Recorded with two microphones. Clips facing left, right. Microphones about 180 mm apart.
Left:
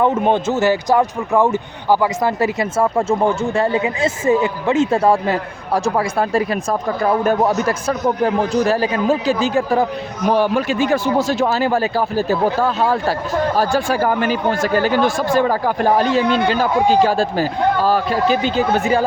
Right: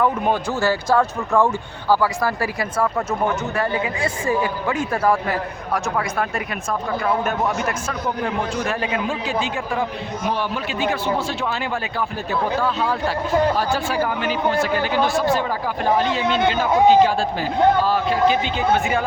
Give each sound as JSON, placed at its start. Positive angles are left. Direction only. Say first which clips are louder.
{"t": 0.0, "sound": "a man's voice", "louder": "left 4 dB", "side_deg": 25}